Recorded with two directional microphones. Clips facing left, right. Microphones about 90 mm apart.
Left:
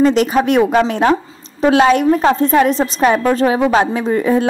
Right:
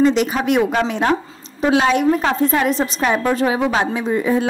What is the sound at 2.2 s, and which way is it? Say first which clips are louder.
A woman's voice: left 5 dB; 30° left (ahead or behind).